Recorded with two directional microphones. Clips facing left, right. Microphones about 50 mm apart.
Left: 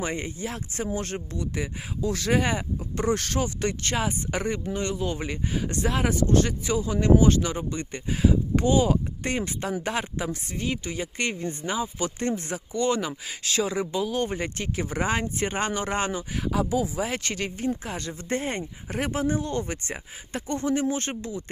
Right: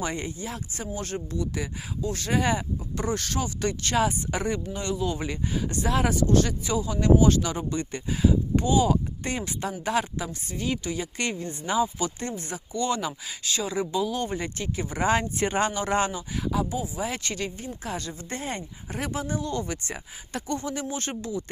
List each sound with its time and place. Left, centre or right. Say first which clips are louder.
0.0 s speech: even; left
0.3 s speech: left 3 dB; left
11.9 s speech: left 3 dB; left
12.9 s speech: left 1 dB; left
13.6 s speech: left 1 dB; left
15.0 s speech: right 4 dB; centre
16.1 s speech: left 1 dB; left